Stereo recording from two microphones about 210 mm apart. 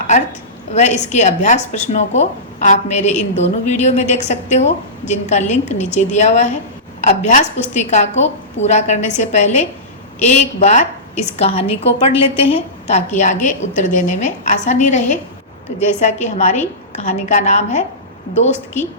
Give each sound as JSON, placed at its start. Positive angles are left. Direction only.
{"t": 0.7, "sound": "speech", "side_deg": 35}